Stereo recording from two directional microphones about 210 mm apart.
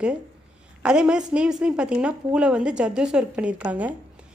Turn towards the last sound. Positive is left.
turn(degrees=-5)  # may be behind; listen again after turning